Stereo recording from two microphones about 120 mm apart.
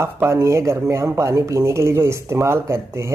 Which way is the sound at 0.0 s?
20° right (ahead or behind).